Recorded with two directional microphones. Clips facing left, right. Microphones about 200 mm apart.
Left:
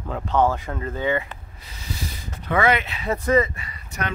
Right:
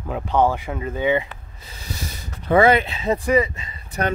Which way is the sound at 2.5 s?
30° right (ahead or behind).